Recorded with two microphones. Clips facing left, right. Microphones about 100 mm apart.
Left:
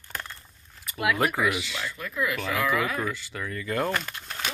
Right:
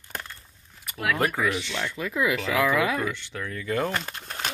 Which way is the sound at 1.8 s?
90° right.